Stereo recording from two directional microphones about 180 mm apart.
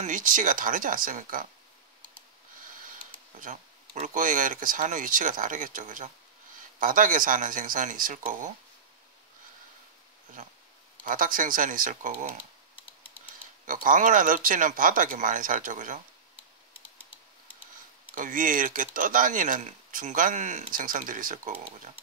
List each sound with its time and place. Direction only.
0.0 s speech: 45° right (ahead or behind)
3.3 s speech: 45° right (ahead or behind)
10.4 s speech: 45° right (ahead or behind)
13.7 s speech: 45° right (ahead or behind)
18.1 s speech: 50° right (ahead or behind)